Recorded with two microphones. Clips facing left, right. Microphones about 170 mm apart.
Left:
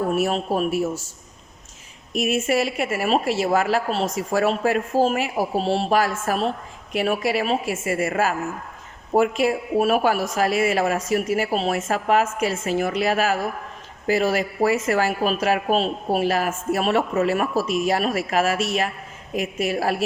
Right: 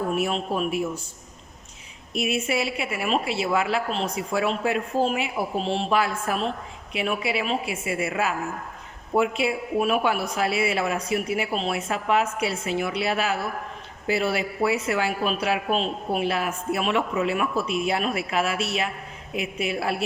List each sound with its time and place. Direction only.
0.1 s a man's voice: 40° left (ahead or behind)
2.1 s a woman's voice: 45° left (ahead or behind)